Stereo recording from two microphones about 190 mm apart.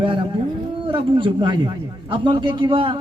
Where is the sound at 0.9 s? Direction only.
25° right (ahead or behind).